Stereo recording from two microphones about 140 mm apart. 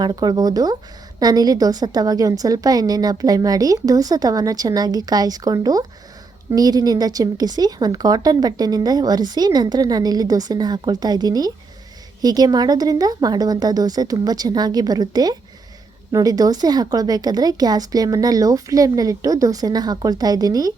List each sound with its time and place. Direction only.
0.0 s a woman's voice: 30° right (ahead or behind)